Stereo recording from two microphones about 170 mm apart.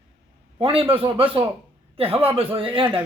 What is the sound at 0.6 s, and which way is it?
A man's voice, 35° right (ahead or behind).